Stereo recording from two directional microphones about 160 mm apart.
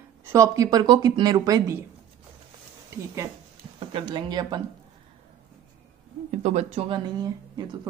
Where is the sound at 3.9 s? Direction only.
30° right (ahead or behind).